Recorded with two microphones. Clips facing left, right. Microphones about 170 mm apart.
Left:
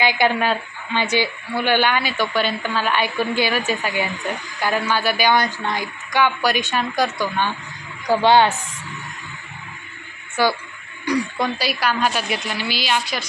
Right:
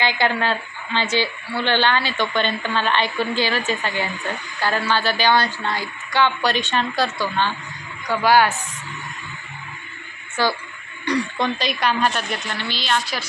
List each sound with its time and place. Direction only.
0.0 s a woman's voice: 15° left (ahead or behind)
8.1 s a woman's voice: 25° left (ahead or behind)
10.4 s a woman's voice: 10° left (ahead or behind)